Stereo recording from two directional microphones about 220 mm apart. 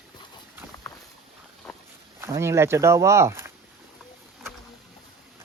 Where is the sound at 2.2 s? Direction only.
10° right (ahead or behind).